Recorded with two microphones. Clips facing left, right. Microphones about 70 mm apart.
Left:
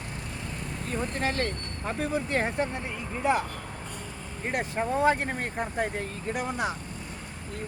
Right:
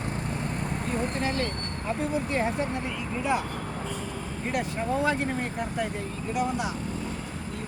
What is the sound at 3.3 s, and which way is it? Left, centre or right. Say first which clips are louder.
Speech: left 1 dB; left.